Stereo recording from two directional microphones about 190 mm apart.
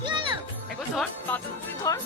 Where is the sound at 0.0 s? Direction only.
25° right (ahead or behind).